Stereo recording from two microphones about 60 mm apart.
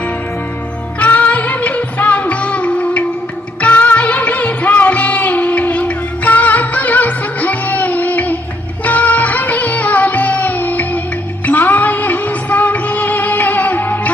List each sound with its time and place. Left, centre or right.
0.9 s music: left